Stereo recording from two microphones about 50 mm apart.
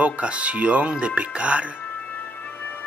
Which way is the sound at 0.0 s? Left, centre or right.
Right.